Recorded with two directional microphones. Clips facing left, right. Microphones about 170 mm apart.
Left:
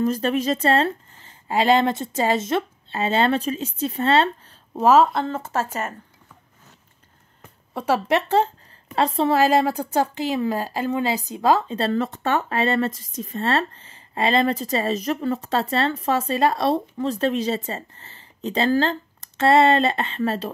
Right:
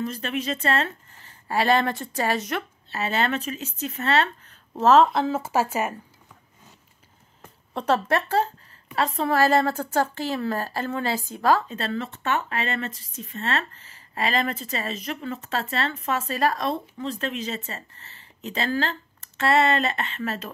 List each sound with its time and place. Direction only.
0.0 s speech: 40° left (ahead or behind)
4.7 s speech: 10° left (ahead or behind); by 5.9 s 10° right (ahead or behind)
7.7 s a woman's voice: 5° left (ahead or behind)
8.1 s a woman's voice: 20° left (ahead or behind)
11.7 s speech: 35° left (ahead or behind)